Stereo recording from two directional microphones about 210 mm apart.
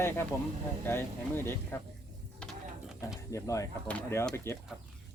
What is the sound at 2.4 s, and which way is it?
Mechanisms, 5° right (ahead or behind).